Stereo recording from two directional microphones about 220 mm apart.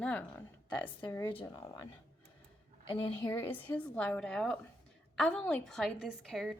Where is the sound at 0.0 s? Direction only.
5° left (ahead or behind).